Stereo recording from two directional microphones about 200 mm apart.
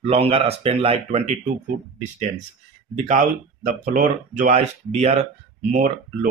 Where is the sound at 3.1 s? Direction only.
40° right (ahead or behind).